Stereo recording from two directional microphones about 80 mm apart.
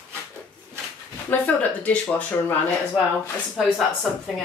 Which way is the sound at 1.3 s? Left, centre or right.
Centre.